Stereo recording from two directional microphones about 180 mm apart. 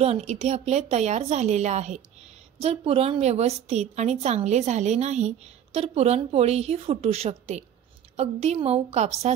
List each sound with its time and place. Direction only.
0.0 s a woman's voice: 35° right (ahead or behind)